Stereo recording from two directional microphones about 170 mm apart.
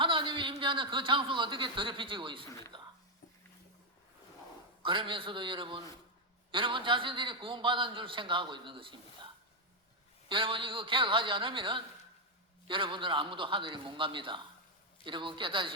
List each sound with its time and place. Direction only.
0.0 s speech: 30° right (ahead or behind)
2.7 s a sound: 30° right (ahead or behind)
4.8 s a man's voice: 30° right (ahead or behind)